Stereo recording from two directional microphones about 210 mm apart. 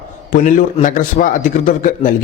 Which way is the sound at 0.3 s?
40° left (ahead or behind).